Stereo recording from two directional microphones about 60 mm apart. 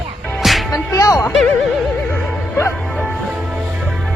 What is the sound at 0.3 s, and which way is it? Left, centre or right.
Music, centre.